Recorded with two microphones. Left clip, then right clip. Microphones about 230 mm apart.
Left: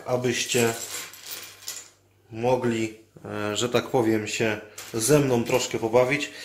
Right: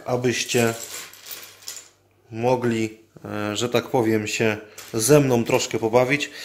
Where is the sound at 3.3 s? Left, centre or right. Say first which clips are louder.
Right 2 dB; right.